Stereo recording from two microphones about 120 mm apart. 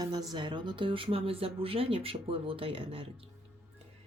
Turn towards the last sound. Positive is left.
turn(degrees=-50)  # may be behind; listen again after turning